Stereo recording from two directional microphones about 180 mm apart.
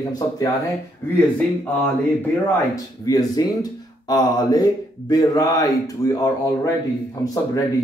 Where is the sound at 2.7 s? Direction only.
20° left (ahead or behind).